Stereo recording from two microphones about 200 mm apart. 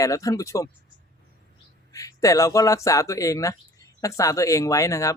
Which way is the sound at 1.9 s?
15° left (ahead or behind).